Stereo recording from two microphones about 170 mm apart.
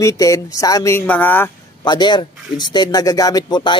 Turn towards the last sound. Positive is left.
turn(degrees=25)  # may be behind; listen again after turning